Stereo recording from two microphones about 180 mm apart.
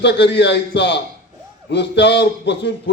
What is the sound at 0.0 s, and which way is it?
A man's voice, 75° left (ahead or behind).